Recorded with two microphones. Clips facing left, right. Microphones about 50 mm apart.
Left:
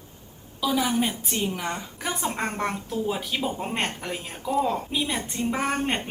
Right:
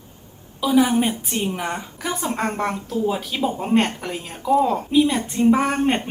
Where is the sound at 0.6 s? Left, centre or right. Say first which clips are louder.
Right 6 dB; right.